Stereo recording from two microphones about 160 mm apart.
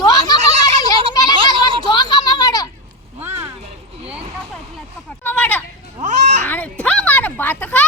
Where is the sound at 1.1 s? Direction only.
25° left (ahead or behind).